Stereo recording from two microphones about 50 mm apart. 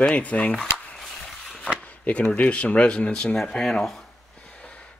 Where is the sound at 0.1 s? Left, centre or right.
Left.